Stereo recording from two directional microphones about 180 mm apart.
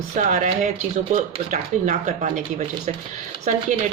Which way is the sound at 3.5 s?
45° right (ahead or behind).